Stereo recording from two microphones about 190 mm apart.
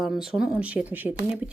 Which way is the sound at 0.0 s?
Centre (ahead or behind).